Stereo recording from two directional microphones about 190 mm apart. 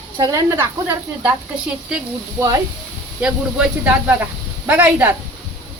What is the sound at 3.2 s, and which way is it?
A man's voice, 5° right (ahead or behind).